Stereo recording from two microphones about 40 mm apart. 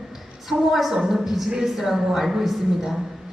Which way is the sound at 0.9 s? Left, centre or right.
Centre.